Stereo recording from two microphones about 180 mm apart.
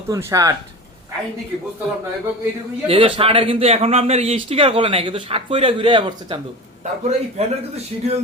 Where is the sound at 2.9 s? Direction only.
30° right (ahead or behind).